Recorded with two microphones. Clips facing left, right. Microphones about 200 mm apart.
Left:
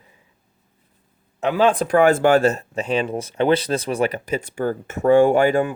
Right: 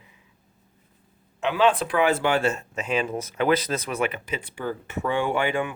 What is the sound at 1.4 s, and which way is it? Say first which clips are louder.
Speech: left 3 dB; 45° left (ahead or behind).